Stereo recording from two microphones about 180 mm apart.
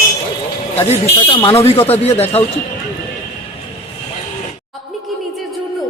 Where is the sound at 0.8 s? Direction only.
35° left (ahead or behind).